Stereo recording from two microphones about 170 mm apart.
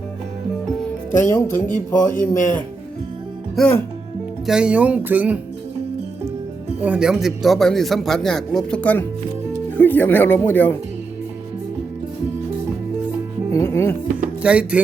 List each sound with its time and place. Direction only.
1.2 s speech: 15° left (ahead or behind)
2.0 s speech: 50° left (ahead or behind)
3.5 s speech: 5° left (ahead or behind)
6.8 s speech: 5° right (ahead or behind); by 10.8 s 10° left (ahead or behind)
13.5 s music: 15° left (ahead or behind)
14.4 s speech: 5° right (ahead or behind)